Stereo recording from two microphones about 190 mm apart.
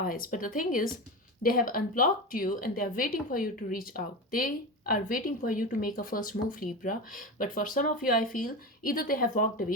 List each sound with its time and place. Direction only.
0.0 s speech: 45° left (ahead or behind)